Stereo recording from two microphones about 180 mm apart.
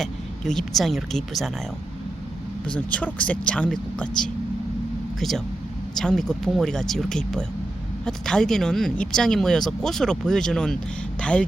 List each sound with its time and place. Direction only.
0.0 s speech: centre (ahead or behind)
2.7 s speech: 10° left (ahead or behind)